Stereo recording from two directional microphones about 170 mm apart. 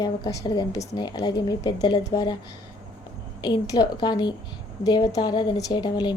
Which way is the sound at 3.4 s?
25° left (ahead or behind).